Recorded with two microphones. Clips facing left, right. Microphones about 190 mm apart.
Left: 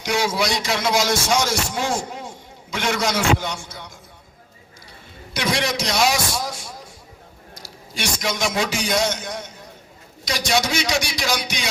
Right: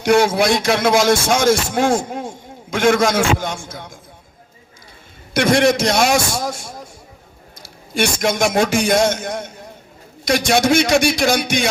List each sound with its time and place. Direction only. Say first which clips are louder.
0.0 s a man's voice: right 8 dB; 55° right (ahead or behind)
5.3 s a man's voice: right 9 dB; 50° right (ahead or behind)